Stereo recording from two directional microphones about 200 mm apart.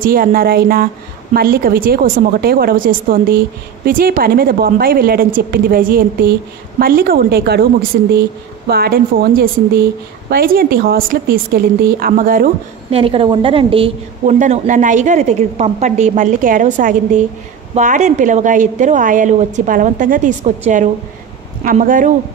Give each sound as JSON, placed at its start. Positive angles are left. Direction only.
{"t": 0.0, "sound": "a woman's voice", "side_deg": -45}
{"t": 8.6, "sound": "a woman's voice", "side_deg": -50}
{"t": 12.9, "sound": "a woman's voice", "side_deg": -25}